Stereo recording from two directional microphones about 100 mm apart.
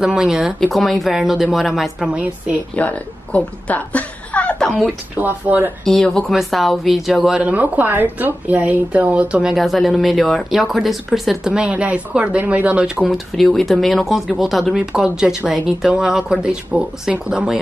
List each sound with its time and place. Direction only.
0.0 s speech: 5° right (ahead or behind)
2.7 s speech: 15° left (ahead or behind)
4.8 s speech: 15° right (ahead or behind)
5.9 s speech: 5° left (ahead or behind)
7.2 s speech: 10° right (ahead or behind)
13.1 s speech: centre (ahead or behind)